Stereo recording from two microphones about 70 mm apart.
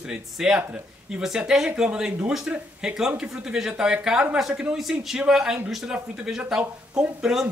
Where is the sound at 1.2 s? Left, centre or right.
Centre.